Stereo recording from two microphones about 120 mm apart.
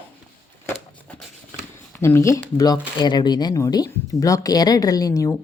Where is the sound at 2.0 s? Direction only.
20° left (ahead or behind).